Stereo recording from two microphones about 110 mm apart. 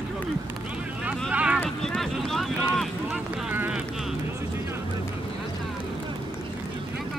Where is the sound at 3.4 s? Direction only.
15° right (ahead or behind).